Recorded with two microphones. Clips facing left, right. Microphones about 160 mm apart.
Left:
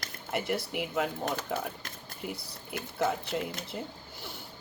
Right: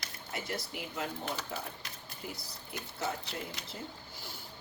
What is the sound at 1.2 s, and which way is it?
Speech, 50° left (ahead or behind).